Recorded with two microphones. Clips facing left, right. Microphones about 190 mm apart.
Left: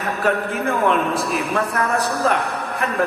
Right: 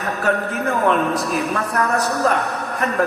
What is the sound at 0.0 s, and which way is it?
Speech, 45° right (ahead or behind).